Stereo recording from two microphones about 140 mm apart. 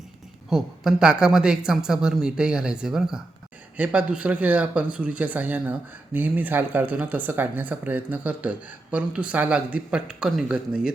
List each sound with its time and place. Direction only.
0.5 s speech: 5° right (ahead or behind)